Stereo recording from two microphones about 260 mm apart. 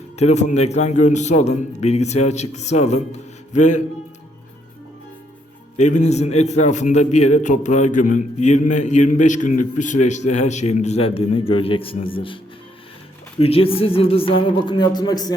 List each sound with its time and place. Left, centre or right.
0.2 s a man's voice: left
5.7 s a man's voice: left
13.4 s a man's voice: left